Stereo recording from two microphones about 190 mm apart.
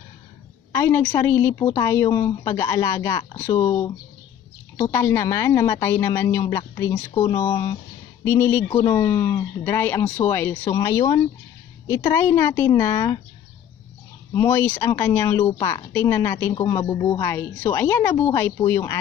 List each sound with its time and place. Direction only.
0.7 s speech: 10° left (ahead or behind)
4.7 s speech: 10° left (ahead or behind)
14.3 s speech: 10° left (ahead or behind)